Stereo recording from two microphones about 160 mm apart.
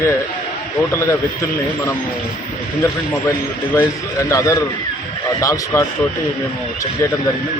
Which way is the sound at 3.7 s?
20° left (ahead or behind).